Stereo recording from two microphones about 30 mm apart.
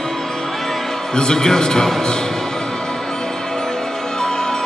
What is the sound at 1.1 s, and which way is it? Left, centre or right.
Speech, left.